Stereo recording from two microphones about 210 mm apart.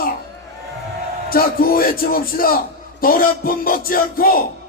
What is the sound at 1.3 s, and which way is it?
Speech, 45° left (ahead or behind).